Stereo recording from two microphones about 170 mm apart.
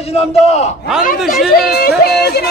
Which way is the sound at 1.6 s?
65° left (ahead or behind).